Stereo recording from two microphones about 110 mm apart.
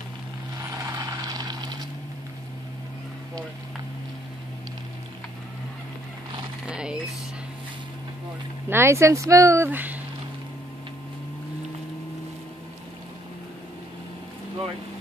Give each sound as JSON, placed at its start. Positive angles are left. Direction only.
{"t": 0.6, "sound": "vehicle", "side_deg": -35}
{"t": 6.6, "sound": "a sound", "side_deg": -10}
{"t": 8.6, "sound": "speech", "side_deg": -20}